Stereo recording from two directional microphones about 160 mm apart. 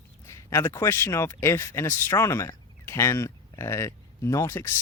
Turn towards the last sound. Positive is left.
turn(degrees=15)  # may be behind; listen again after turning